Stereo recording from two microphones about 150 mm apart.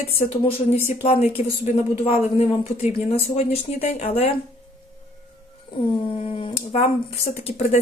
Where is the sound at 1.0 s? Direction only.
45° left (ahead or behind).